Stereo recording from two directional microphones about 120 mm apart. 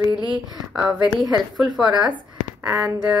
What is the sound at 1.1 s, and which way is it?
Speech, 35° right (ahead or behind).